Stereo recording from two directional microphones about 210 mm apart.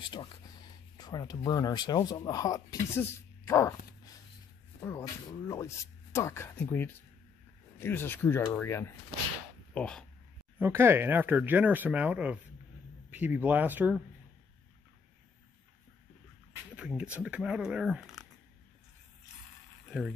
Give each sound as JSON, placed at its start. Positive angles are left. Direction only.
{"t": 0.0, "sound": "speech", "side_deg": 20}
{"t": 10.6, "sound": "speech", "side_deg": -10}
{"t": 16.7, "sound": "speech", "side_deg": -5}
{"t": 19.9, "sound": "speech", "side_deg": 0}